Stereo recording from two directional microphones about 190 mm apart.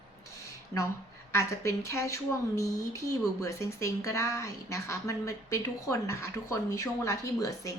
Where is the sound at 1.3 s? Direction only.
15° left (ahead or behind).